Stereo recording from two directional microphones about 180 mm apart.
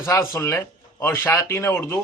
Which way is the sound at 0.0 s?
15° left (ahead or behind).